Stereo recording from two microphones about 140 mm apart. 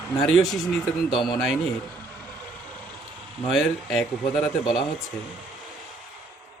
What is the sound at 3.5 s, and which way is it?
Speech, centre (ahead or behind).